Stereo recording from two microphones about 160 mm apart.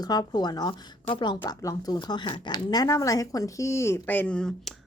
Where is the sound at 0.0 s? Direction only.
25° left (ahead or behind).